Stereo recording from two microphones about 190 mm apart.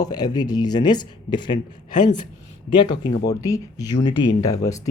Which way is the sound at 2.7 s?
25° left (ahead or behind).